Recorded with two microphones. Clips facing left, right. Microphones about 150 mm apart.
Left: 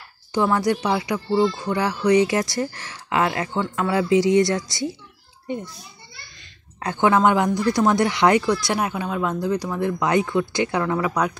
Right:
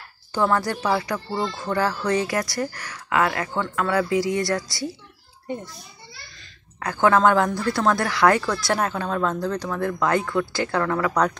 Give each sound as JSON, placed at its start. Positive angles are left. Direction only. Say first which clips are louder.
{"t": 0.3, "sound": "speech", "louder": "left 2 dB", "side_deg": 15}
{"t": 6.8, "sound": "speech", "louder": "even", "side_deg": 20}